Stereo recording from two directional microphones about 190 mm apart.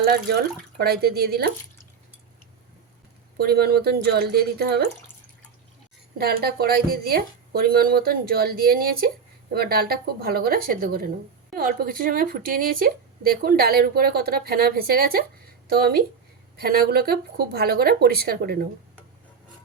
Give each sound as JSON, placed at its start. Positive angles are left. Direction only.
{"t": 0.8, "sound": "speech", "side_deg": -55}
{"t": 3.3, "sound": "speech", "side_deg": -55}
{"t": 6.1, "sound": "speech", "side_deg": -55}